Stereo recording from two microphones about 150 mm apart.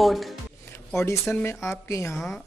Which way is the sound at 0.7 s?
20° left (ahead or behind).